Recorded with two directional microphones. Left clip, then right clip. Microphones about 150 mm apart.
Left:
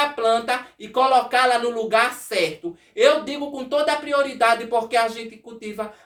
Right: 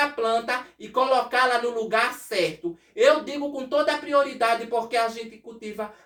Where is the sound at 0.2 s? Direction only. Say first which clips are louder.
Left 4 dB; 25° left (ahead or behind).